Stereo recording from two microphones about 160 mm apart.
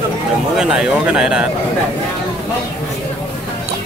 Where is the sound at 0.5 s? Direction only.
5° right (ahead or behind).